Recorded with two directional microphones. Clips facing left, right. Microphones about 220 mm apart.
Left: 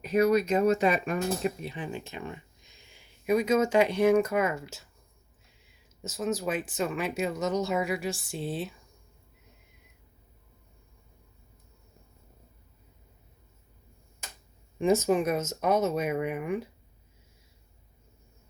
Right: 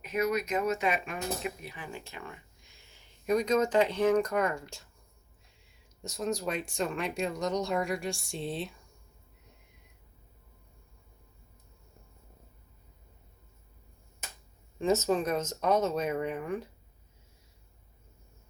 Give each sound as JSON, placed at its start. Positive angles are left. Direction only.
{"t": 0.0, "sound": "speech", "side_deg": 35}
{"t": 1.6, "sound": "speech", "side_deg": 20}
{"t": 14.8, "sound": "speech", "side_deg": 15}